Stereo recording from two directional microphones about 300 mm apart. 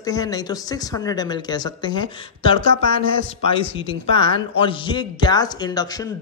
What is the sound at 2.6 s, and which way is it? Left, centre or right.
Speech, right.